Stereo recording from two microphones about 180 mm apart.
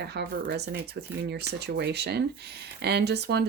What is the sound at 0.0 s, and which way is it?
Speech, 65° right (ahead or behind).